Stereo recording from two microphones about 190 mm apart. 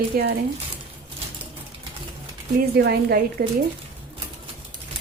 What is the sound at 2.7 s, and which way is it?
Speech, 55° right (ahead or behind).